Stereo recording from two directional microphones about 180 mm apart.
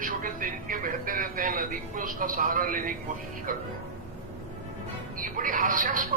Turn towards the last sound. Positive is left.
turn(degrees=-50)  # may be behind; listen again after turning